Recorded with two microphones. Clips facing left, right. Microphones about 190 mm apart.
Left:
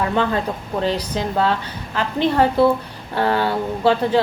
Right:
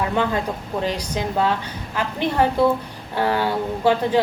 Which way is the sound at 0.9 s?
10° right (ahead or behind).